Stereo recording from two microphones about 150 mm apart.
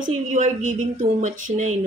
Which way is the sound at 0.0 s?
55° right (ahead or behind).